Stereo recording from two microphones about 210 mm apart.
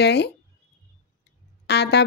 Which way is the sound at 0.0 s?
55° left (ahead or behind).